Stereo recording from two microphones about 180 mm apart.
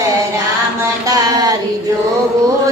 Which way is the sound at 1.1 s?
20° right (ahead or behind).